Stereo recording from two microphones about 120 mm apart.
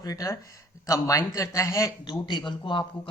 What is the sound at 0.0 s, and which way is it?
Speech, 30° left (ahead or behind).